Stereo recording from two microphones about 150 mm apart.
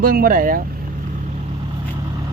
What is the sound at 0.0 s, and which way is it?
Speech, 75° right (ahead or behind).